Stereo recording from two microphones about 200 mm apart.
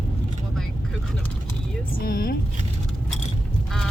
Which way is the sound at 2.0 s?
50° left (ahead or behind).